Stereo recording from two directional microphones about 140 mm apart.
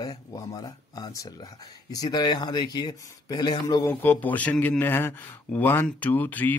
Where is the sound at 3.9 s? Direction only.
15° left (ahead or behind).